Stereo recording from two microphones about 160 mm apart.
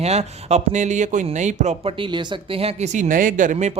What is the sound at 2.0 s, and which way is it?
Speech, 30° right (ahead or behind).